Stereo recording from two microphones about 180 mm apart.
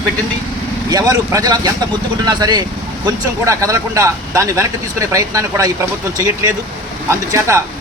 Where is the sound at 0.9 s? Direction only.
20° right (ahead or behind).